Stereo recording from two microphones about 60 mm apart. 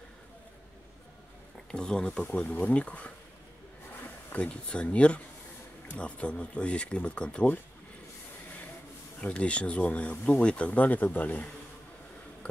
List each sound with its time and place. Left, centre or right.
1.7 s speech: centre
2.3 s speech: left
4.4 s speech: centre
9.2 s speech: left